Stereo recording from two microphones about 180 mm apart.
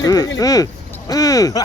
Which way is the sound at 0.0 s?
20° left (ahead or behind).